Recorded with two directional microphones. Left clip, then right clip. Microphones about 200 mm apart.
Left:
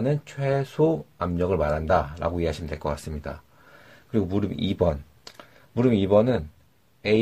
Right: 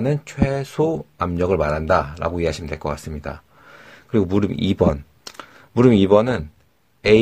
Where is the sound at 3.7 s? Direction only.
40° right (ahead or behind).